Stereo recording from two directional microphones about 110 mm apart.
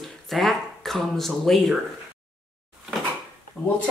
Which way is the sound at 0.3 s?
Centre (ahead or behind).